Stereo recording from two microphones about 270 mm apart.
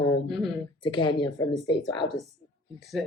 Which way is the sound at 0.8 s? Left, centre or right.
Centre.